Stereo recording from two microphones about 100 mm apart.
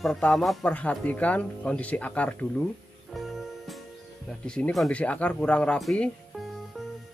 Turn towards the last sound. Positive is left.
turn(degrees=5)  # may be behind; listen again after turning